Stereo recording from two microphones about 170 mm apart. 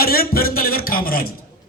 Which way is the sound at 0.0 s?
60° left (ahead or behind).